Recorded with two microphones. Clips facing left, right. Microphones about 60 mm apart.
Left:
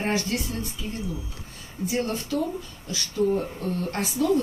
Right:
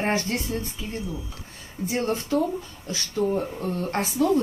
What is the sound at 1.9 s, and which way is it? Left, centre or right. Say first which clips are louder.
Speech: right 2 dB; right.